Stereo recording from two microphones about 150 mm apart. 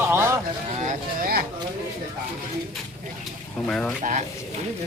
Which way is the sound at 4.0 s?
55° right (ahead or behind).